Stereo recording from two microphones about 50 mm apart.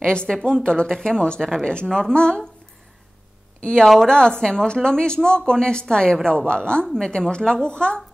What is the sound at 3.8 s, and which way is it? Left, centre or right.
Speech, centre.